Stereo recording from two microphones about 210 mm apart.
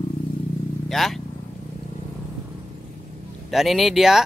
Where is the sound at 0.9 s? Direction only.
Centre (ahead or behind).